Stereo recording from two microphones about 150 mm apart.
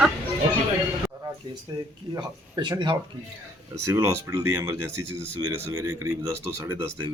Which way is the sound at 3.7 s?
20° right (ahead or behind).